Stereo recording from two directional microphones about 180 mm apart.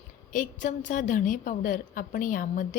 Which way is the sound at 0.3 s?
45° left (ahead or behind).